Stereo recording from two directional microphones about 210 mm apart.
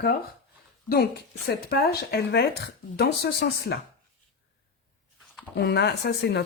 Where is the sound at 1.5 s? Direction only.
50° left (ahead or behind).